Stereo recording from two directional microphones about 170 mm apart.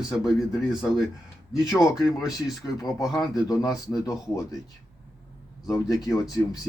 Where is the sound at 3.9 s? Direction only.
20° left (ahead or behind).